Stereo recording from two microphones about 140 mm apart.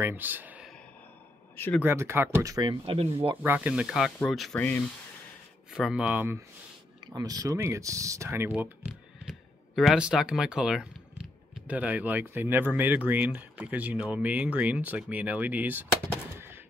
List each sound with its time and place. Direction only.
0.0 s speech: 15° right (ahead or behind)
1.8 s speech: 15° right (ahead or behind); by 3.1 s 40° right (ahead or behind)
3.4 s speech: 10° right (ahead or behind)
5.7 s speech: 5° right (ahead or behind)
7.1 s speech: 30° right (ahead or behind); by 15.9 s 15° right (ahead or behind)
16.3 s a sound: 15° right (ahead or behind)